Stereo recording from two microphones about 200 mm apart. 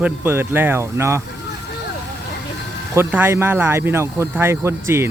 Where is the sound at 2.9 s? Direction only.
10° right (ahead or behind).